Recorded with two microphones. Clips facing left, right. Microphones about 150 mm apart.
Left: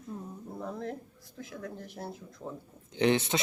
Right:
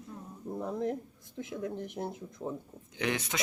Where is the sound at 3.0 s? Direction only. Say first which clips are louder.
Left 7 dB; 30° left (ahead or behind).